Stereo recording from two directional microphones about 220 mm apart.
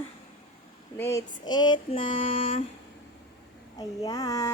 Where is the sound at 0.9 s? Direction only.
10° left (ahead or behind).